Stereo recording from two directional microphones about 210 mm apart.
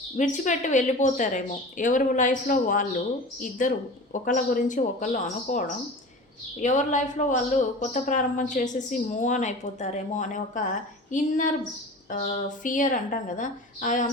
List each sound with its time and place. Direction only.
0.2 s speech: 35° left (ahead or behind)